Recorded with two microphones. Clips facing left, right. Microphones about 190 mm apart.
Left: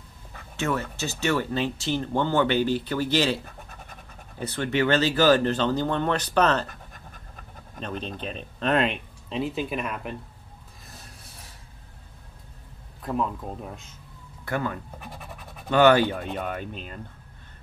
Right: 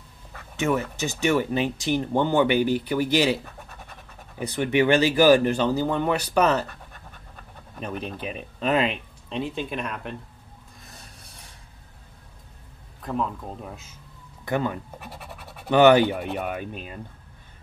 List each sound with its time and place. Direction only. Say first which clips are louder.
0.6 s speech: right 3 dB; 15° right (ahead or behind)
4.4 s speech: right 3 dB; 15° right (ahead or behind)
7.8 s speech: right 1 dB; 10° right (ahead or behind)
10.8 s a sound: left 1 dB; centre (ahead or behind)
13.0 s speech: even; centre (ahead or behind)
14.4 s speech: right 3 dB; 20° right (ahead or behind)
15.0 s scratch: right 1 dB; 5° right (ahead or behind)
15.8 s speech: right 2 dB; 15° right (ahead or behind)